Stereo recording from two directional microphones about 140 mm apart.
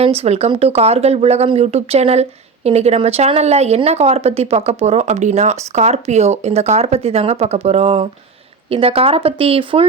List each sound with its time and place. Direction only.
0.0 s a woman's voice: 45° right (ahead or behind)